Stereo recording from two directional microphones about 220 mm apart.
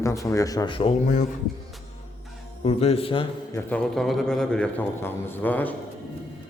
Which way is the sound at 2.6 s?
25° left (ahead or behind).